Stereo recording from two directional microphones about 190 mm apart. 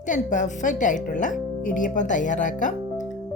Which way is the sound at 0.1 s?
40° left (ahead or behind).